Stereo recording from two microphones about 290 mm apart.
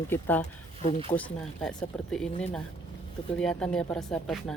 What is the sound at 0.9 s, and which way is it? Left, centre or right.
Speech, centre.